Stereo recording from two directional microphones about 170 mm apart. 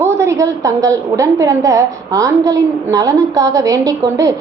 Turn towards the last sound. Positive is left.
turn(degrees=-20)  # may be behind; listen again after turning